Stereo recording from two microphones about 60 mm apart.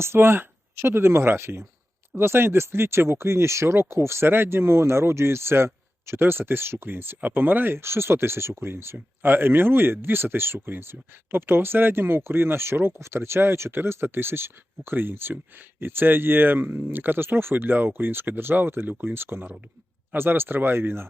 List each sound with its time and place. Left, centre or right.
0.0 s speech: right